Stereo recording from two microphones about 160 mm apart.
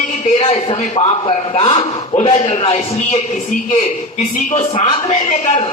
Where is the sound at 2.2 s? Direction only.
45° left (ahead or behind).